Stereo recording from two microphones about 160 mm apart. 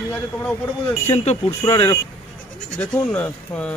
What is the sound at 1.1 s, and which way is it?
Speech, 40° left (ahead or behind).